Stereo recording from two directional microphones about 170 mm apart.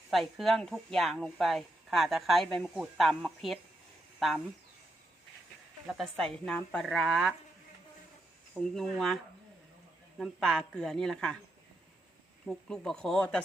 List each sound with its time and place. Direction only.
0.1 s speech: centre (ahead or behind)
5.9 s speech: centre (ahead or behind)
8.6 s speech: centre (ahead or behind)
12.5 s speech: 5° left (ahead or behind)